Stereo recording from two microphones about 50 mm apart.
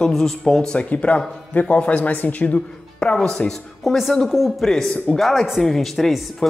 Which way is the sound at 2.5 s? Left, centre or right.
Centre.